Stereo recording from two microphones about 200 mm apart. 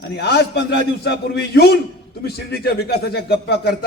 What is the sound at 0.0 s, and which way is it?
A man's voice, 55° left (ahead or behind).